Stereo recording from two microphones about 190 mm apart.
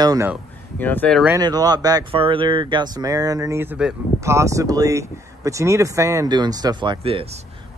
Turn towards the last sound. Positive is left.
turn(degrees=-30)  # may be behind; listen again after turning